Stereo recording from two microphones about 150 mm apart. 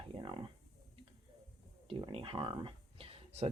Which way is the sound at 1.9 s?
35° right (ahead or behind).